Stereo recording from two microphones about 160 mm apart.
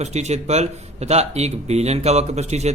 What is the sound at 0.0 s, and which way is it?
Speech, 45° right (ahead or behind).